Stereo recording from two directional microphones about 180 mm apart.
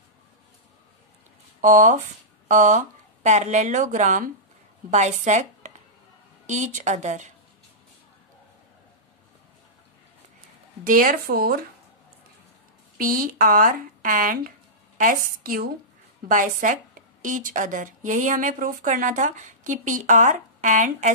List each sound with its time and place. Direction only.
1.6 s a woman's voice: 45° right (ahead or behind)
10.8 s speech: 50° right (ahead or behind)
12.9 s a woman's voice: 50° right (ahead or behind)